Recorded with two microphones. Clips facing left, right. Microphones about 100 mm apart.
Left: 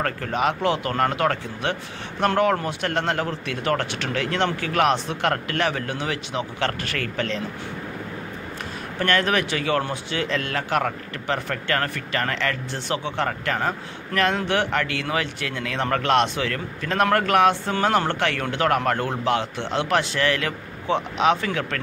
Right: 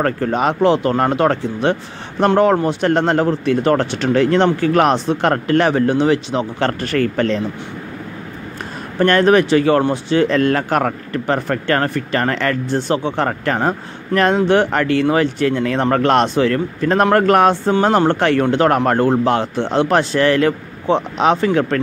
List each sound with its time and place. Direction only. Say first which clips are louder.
0.0 s speech: right 6 dB; 35° right (ahead or behind)
8.9 s speech: right 10 dB; 35° right (ahead or behind)